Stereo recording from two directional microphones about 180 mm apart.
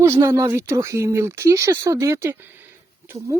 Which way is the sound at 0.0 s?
15° right (ahead or behind).